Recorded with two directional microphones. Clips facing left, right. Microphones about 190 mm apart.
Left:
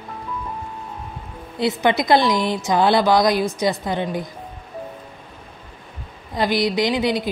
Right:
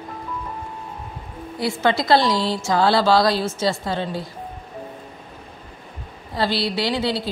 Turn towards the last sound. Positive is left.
turn(degrees=15)  # may be behind; listen again after turning